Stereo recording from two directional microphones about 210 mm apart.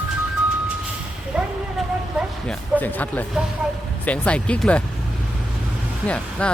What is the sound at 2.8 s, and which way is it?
Speech, 10° left (ahead or behind).